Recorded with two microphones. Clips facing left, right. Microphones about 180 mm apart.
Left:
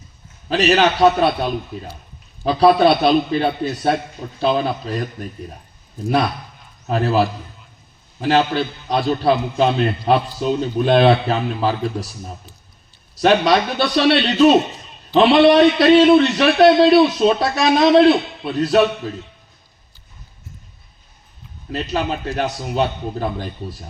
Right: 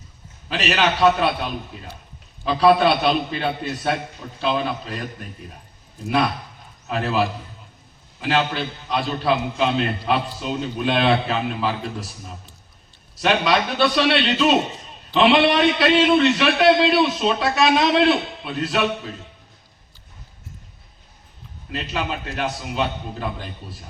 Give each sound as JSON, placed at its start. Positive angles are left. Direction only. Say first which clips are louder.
{"t": 0.4, "sound": "a man's voice", "louder": "left 6 dB", "side_deg": 40}
{"t": 6.8, "sound": "a man's voice", "louder": "left 4 dB", "side_deg": 40}
{"t": 13.2, "sound": "a man's voice", "louder": "left 5 dB", "side_deg": 40}
{"t": 21.7, "sound": "a man's voice", "louder": "left 5 dB", "side_deg": 40}